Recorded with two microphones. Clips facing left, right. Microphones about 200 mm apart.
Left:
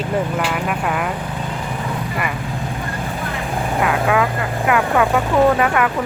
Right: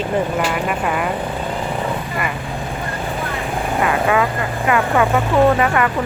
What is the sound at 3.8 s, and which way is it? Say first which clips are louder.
Speech: even; centre (ahead or behind).